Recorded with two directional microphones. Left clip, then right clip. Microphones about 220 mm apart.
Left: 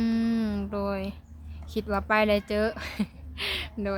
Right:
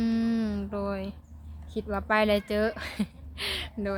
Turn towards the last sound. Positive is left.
turn(degrees=0)  # may be behind; listen again after turning